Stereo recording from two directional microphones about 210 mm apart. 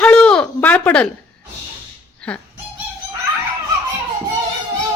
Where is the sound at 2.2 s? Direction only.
5° left (ahead or behind).